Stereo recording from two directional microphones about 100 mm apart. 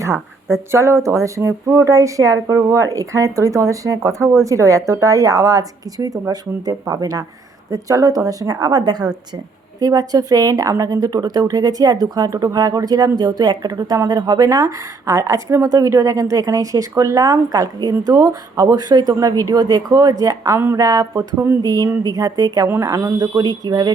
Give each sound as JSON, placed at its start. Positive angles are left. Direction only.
{"t": 0.5, "sound": "speech", "side_deg": -25}
{"t": 21.6, "sound": "speech", "side_deg": -40}